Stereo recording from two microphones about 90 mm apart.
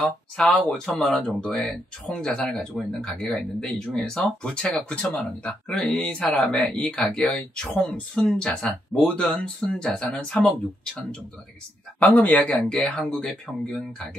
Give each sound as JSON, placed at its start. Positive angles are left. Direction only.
{"t": 0.4, "sound": "speech", "side_deg": 5}
{"t": 12.1, "sound": "speech", "side_deg": 15}